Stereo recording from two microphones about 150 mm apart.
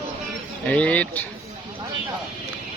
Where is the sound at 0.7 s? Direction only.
10° left (ahead or behind).